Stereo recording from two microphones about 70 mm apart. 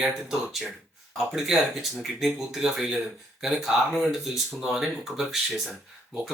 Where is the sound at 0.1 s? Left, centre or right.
Centre.